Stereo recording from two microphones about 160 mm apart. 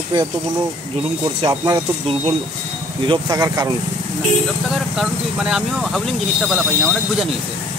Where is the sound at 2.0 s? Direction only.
35° right (ahead or behind).